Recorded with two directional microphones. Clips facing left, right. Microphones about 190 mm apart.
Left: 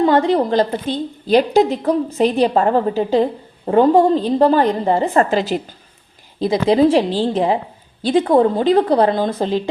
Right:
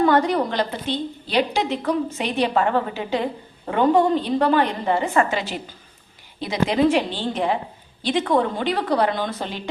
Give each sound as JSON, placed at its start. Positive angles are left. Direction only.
{"t": 0.0, "sound": "a woman's voice", "side_deg": 25}